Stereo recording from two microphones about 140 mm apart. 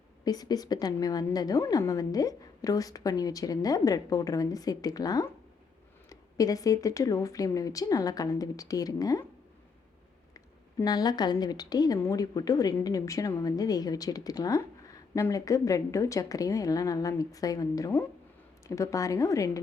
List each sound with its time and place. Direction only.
0.3 s a woman's voice: 25° left (ahead or behind)
10.8 s a woman's voice: 30° left (ahead or behind)